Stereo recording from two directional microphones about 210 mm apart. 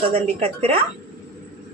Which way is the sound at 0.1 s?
30° right (ahead or behind).